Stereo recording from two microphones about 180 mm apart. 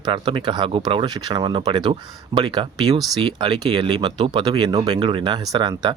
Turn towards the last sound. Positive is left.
turn(degrees=-25)  # may be behind; listen again after turning